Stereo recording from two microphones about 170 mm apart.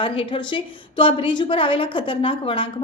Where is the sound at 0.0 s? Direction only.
30° left (ahead or behind).